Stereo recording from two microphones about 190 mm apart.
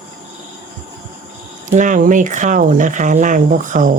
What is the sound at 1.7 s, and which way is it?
Speech, 40° right (ahead or behind).